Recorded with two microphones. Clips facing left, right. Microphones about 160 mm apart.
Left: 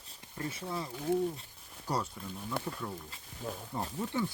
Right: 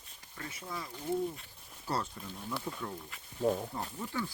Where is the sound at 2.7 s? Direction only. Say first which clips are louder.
Left 1 dB; centre (ahead or behind).